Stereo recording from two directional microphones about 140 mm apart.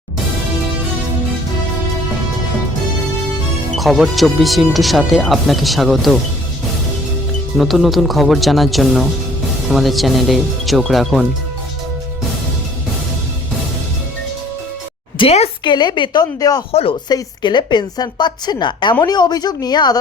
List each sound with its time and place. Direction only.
3.8 s speech: centre (ahead or behind)
7.6 s speech: centre (ahead or behind)
15.2 s a woman's voice: 50° left (ahead or behind)
15.6 s a woman's voice: 30° left (ahead or behind)